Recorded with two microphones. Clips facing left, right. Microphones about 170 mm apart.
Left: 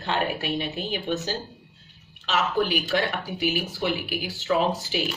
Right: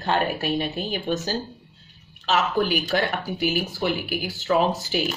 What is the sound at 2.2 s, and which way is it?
A woman's voice, 40° right (ahead or behind).